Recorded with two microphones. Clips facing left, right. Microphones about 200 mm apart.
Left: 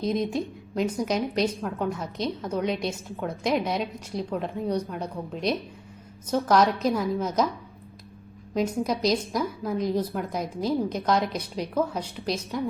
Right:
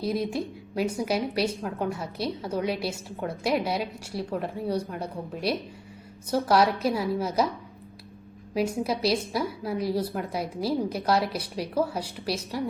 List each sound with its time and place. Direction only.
0.0 s a woman's voice: 5° right (ahead or behind)
8.5 s a woman's voice: 5° right (ahead or behind)